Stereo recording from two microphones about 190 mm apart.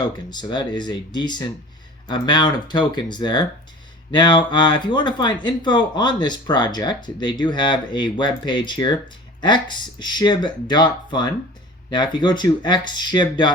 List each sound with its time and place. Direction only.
0.0 s speech: 20° left (ahead or behind)